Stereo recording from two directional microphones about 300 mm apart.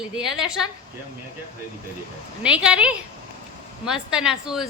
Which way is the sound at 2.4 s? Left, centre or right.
Centre.